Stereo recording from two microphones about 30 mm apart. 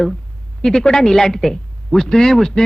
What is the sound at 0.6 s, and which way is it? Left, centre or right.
A man's voice, centre.